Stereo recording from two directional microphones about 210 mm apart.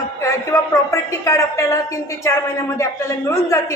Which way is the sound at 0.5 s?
15° left (ahead or behind).